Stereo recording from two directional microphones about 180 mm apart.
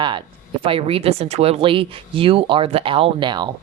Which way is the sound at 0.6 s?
30° right (ahead or behind).